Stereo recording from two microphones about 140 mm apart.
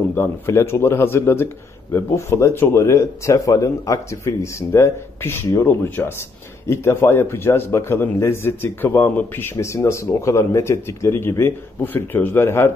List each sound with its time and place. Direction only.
0.1 s a man's voice: 15° left (ahead or behind)